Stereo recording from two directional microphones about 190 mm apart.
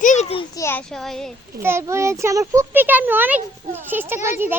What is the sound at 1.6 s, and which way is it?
Speech, 15° right (ahead or behind).